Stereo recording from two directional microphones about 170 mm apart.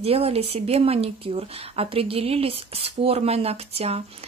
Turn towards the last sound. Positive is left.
turn(degrees=-35)  # may be behind; listen again after turning